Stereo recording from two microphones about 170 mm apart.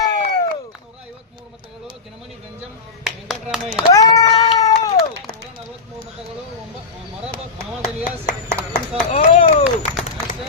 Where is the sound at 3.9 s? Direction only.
20° left (ahead or behind).